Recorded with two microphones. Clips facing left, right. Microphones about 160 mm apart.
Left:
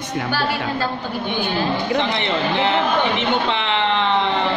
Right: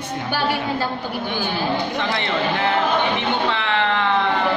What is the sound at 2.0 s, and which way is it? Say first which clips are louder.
Speech: left 2 dB; 20° left (ahead or behind).